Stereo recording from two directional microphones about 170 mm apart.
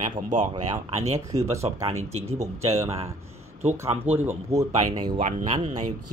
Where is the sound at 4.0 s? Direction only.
10° right (ahead or behind).